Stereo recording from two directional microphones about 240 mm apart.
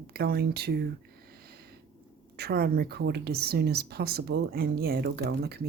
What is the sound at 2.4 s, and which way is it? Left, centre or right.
Speech, right.